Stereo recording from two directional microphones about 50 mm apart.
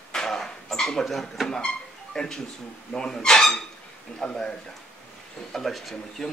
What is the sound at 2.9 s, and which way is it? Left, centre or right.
Speech, centre.